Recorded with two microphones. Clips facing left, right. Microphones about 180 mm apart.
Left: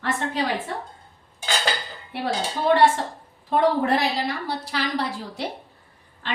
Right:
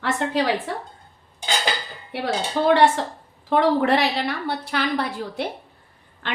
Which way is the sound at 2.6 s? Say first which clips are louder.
Right 2 dB; 75° right (ahead or behind).